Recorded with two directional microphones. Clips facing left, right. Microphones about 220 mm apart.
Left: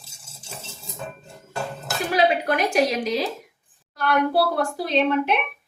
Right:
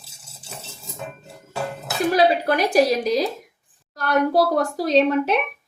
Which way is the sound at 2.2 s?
35° right (ahead or behind).